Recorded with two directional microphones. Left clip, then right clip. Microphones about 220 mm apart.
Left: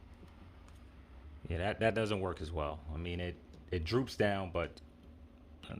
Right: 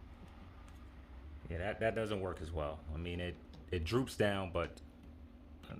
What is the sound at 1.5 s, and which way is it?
Speech, 35° left (ahead or behind).